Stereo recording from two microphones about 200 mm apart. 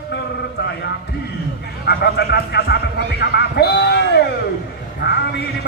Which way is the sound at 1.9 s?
55° left (ahead or behind).